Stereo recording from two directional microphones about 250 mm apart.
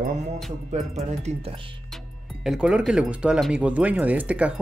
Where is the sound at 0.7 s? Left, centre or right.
Right.